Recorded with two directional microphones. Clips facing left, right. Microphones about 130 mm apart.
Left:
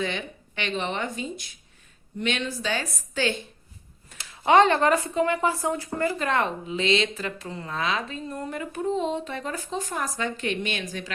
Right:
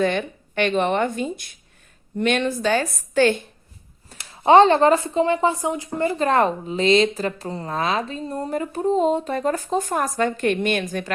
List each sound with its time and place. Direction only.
0.0 s speech: 55° right (ahead or behind)
4.1 s speech: 35° right (ahead or behind)
6.2 s a woman's voice: 40° right (ahead or behind)